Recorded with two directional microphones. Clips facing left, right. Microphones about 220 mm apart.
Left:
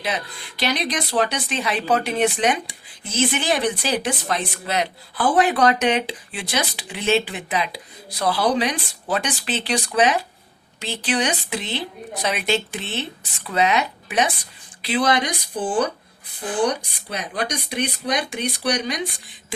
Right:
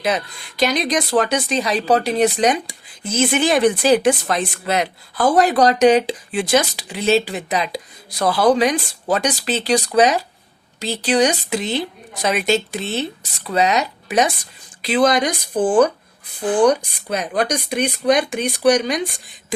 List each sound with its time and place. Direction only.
0.0 s speech: 45° right (ahead or behind)
17.1 s speech: 45° right (ahead or behind)